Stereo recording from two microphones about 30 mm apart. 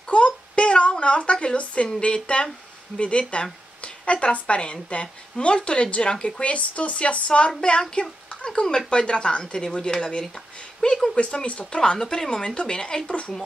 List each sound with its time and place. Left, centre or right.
0.1 s a sound: left
2.0 s a woman's voice: left
6.4 s a woman's voice: left
8.5 s speech: left
10.8 s speech: left
11.1 s speech: left
11.7 s speech: left
12.3 s speech: left